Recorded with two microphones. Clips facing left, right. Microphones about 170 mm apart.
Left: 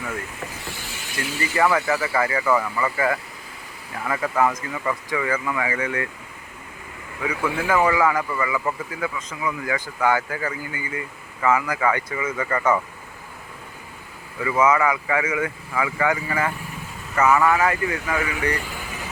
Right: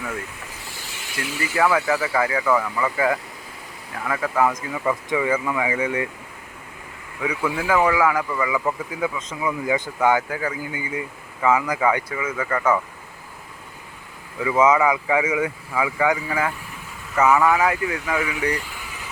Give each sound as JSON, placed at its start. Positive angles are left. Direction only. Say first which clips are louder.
{"t": 1.4, "sound": "speech", "louder": "even", "side_deg": -5}
{"t": 4.5, "sound": "speech", "louder": "right 3 dB", "side_deg": -15}
{"t": 7.2, "sound": "speech", "louder": "even", "side_deg": -10}
{"t": 8.4, "sound": "speech", "louder": "right 2 dB", "side_deg": -10}
{"t": 14.4, "sound": "speech", "louder": "right 2 dB", "side_deg": -20}